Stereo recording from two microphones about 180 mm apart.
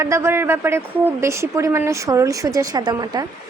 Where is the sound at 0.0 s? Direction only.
15° right (ahead or behind).